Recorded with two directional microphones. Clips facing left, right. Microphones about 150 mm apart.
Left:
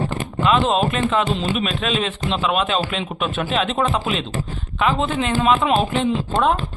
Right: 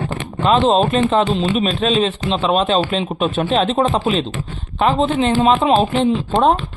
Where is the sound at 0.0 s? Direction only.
35° left (ahead or behind).